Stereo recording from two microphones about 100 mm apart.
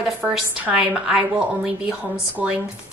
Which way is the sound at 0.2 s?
15° right (ahead or behind).